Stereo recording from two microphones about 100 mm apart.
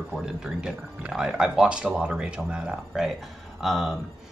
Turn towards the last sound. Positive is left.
turn(degrees=-5)  # may be behind; listen again after turning